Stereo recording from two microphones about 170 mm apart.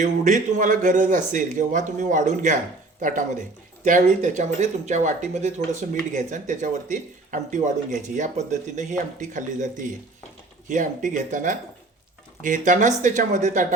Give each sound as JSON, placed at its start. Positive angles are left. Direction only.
{"t": 0.0, "sound": "speech", "side_deg": -50}